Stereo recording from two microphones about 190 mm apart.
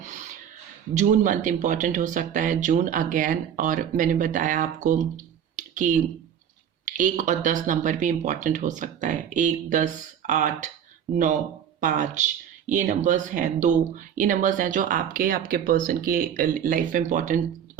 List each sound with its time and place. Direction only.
0.0 s a sound: 40° right (ahead or behind)
0.9 s speech: 40° right (ahead or behind)
11.8 s speech: 40° right (ahead or behind)